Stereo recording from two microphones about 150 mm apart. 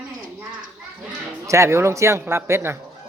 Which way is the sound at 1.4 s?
20° right (ahead or behind).